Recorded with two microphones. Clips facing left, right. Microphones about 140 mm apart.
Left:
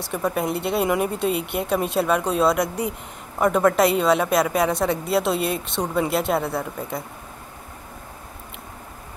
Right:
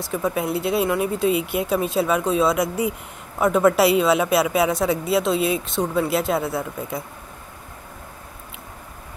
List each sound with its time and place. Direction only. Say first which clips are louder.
0.0 s a woman's voice: even; centre (ahead or behind)